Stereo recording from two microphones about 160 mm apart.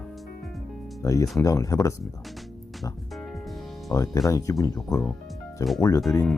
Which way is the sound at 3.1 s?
Centre (ahead or behind).